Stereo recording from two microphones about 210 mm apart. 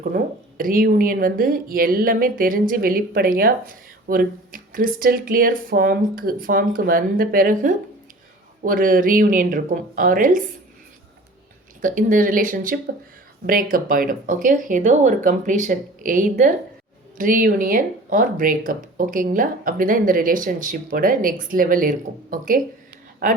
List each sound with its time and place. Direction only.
0.1 s a woman's voice: 40° right (ahead or behind)
11.8 s speech: 40° right (ahead or behind)